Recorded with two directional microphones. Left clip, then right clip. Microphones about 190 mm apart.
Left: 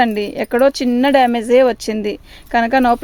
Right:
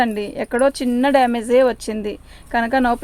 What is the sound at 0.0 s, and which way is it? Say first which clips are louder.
Speech: left 4 dB; 45° left (ahead or behind).